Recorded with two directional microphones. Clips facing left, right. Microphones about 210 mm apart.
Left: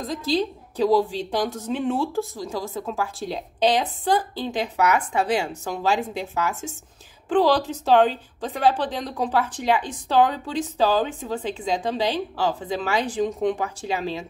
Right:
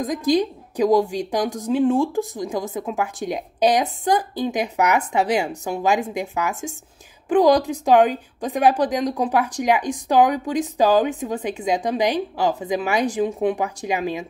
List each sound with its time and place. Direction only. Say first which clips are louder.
0.0 s a woman's voice: right 5 dB; 15° right (ahead or behind)